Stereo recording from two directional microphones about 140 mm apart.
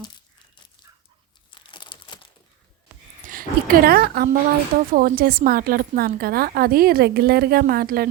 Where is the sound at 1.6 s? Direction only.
35° left (ahead or behind).